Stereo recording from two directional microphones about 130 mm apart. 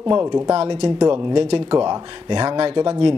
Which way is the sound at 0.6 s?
45° right (ahead or behind).